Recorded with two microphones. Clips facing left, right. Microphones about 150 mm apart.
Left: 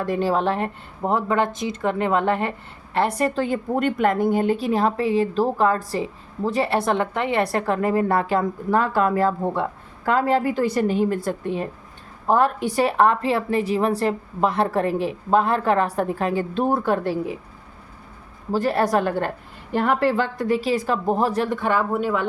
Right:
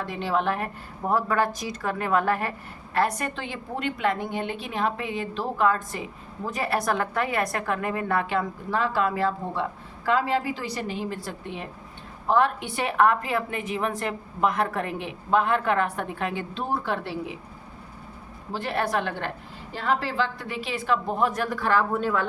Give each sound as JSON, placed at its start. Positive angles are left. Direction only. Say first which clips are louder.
{"t": 0.0, "sound": "a woman's voice", "louder": "left 5 dB", "side_deg": 45}
{"t": 18.5, "sound": "speech", "louder": "left 7 dB", "side_deg": 40}
{"t": 19.7, "sound": "speech", "louder": "left 7 dB", "side_deg": 55}